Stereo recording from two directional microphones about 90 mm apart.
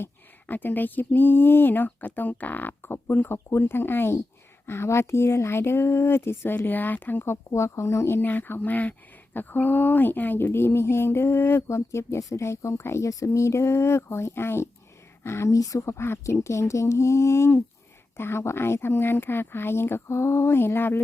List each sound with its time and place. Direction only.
0.0 s speech: 20° left (ahead or behind)